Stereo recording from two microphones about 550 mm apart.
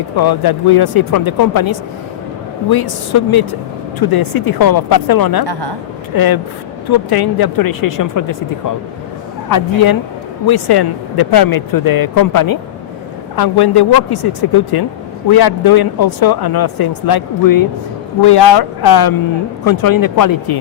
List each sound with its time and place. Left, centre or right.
0.2 s speech: left
5.5 s speech: right
6.1 s speech: left
10.4 s speech: left